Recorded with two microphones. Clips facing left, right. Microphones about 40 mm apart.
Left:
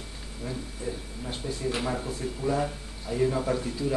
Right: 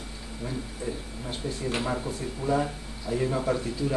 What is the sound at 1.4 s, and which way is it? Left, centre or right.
Speech, centre.